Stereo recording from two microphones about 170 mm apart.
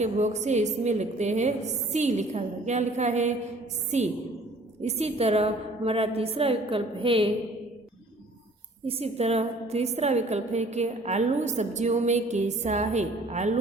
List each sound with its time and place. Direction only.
0.0 s a woman's voice: 40° right (ahead or behind)
8.9 s a woman's voice: 35° right (ahead or behind)